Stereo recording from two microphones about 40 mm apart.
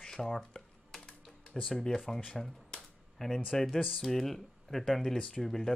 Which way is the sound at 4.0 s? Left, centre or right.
Centre.